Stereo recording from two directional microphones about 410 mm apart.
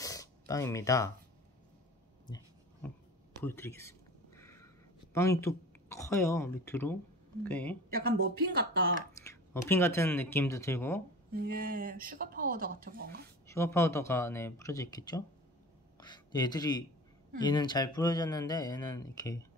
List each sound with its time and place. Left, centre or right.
0.0 s a sound: centre
2.2 s a sound: centre
3.4 s speech: centre
4.4 s a sound: centre
5.1 s speech: centre
7.9 s speech: right
9.2 s speech: centre
11.3 s speech: right
13.5 s a man's voice: centre